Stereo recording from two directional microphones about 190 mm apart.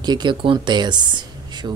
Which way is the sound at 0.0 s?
25° right (ahead or behind).